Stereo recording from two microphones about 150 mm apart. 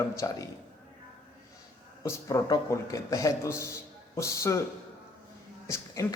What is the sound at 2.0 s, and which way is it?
A man's voice, 20° left (ahead or behind).